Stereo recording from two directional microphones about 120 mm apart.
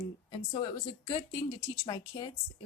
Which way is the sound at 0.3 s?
45° left (ahead or behind).